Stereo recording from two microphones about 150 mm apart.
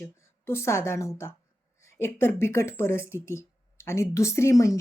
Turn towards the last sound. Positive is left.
turn(degrees=20)  # may be behind; listen again after turning